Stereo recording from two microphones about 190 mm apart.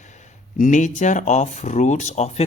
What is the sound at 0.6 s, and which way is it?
Speech, 40° left (ahead or behind).